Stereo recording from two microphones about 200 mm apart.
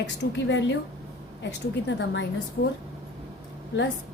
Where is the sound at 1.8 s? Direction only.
60° left (ahead or behind).